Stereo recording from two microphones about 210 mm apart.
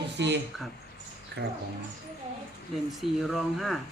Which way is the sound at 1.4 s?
50° right (ahead or behind).